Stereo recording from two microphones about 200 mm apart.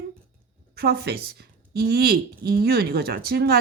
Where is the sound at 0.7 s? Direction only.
50° right (ahead or behind).